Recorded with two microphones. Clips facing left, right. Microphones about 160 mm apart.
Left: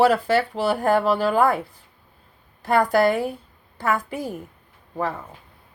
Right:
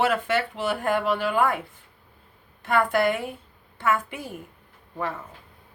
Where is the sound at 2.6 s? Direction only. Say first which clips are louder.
Left 4 dB; 35° left (ahead or behind).